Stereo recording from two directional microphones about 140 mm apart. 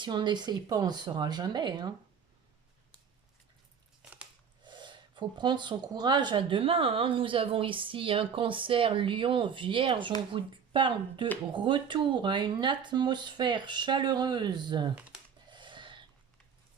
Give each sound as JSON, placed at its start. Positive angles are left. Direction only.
{"t": 0.0, "sound": "speech", "side_deg": -35}
{"t": 4.0, "sound": "biting", "side_deg": -10}
{"t": 4.6, "sound": "speech", "side_deg": -35}
{"t": 15.4, "sound": "a sound", "side_deg": -35}